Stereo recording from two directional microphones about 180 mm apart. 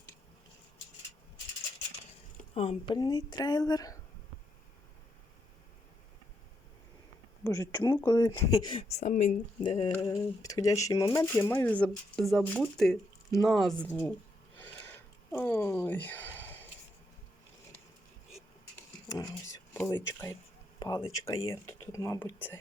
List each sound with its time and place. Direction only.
2.6 s speech: 30° left (ahead or behind)
7.4 s speech: 20° left (ahead or behind)
10.1 s speech: 20° left (ahead or behind); by 13.7 s centre (ahead or behind)
14.6 s a sound: 10° left (ahead or behind)
18.8 s a sound: 20° left (ahead or behind)
19.7 s speech: 15° left (ahead or behind)